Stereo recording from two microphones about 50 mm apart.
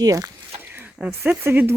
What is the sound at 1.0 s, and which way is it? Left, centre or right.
Speech, right.